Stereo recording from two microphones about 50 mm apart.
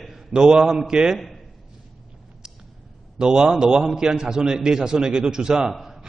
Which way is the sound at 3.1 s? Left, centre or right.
Centre.